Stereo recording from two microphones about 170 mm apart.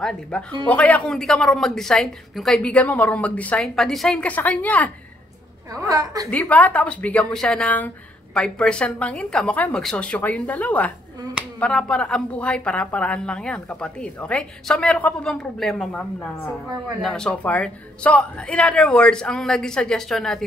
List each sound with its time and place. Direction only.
0.3 s a woman's voice: 5° left (ahead or behind)
5.8 s a woman's voice: 20° right (ahead or behind)
6.3 s a woman's voice: 10° left (ahead or behind)